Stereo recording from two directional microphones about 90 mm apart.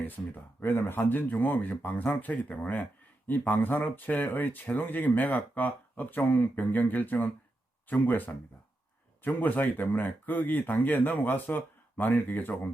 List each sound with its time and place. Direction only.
0.6 s speech: 25° left (ahead or behind)